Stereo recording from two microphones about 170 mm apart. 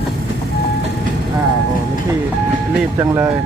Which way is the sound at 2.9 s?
15° right (ahead or behind).